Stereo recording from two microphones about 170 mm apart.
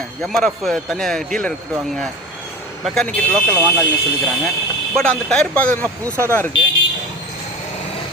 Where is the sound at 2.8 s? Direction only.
Centre (ahead or behind).